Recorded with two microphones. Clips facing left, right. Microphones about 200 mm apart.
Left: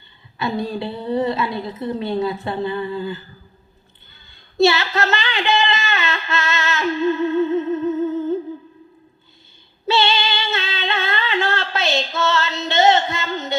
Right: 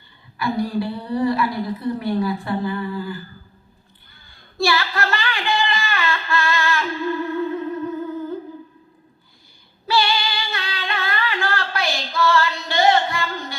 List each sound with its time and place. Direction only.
0.3 s a woman's voice: 25° left (ahead or behind)
4.3 s a sound: 25° left (ahead or behind)
9.8 s female singing: 25° left (ahead or behind)